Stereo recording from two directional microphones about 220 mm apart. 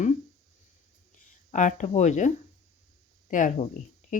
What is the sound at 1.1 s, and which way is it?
Speech, 35° left (ahead or behind).